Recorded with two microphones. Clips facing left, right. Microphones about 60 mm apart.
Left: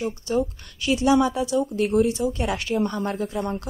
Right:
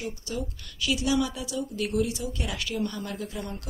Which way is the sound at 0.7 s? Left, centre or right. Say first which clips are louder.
Left 7 dB; left.